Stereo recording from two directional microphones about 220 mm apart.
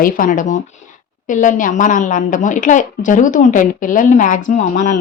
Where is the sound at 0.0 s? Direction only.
40° left (ahead or behind).